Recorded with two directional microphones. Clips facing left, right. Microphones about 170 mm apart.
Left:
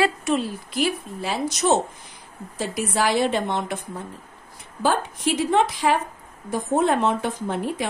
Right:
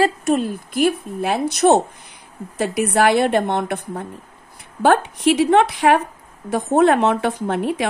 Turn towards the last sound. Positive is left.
turn(degrees=-70)  # may be behind; listen again after turning